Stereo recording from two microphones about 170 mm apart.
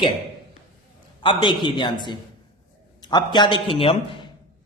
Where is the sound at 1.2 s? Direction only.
30° left (ahead or behind).